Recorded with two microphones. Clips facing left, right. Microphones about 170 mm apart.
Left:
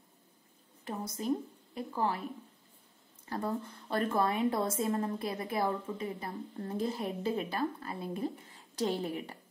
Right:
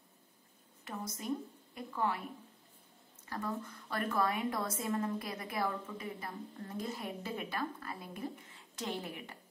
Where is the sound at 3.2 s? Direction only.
30° left (ahead or behind).